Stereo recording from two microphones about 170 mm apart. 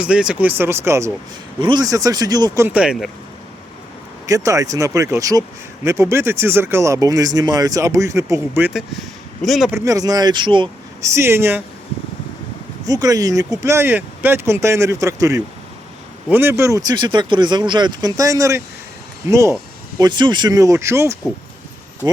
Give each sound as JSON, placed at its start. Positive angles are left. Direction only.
{"t": 0.0, "sound": "speech", "side_deg": -5}
{"t": 1.5, "sound": "speech", "side_deg": -25}
{"t": 2.6, "sound": "speech", "side_deg": -5}
{"t": 4.3, "sound": "speech", "side_deg": -20}
{"t": 9.4, "sound": "speech", "side_deg": 0}
{"t": 9.7, "sound": "speech", "side_deg": -20}
{"t": 11.0, "sound": "speech", "side_deg": -15}
{"t": 12.8, "sound": "speech", "side_deg": -20}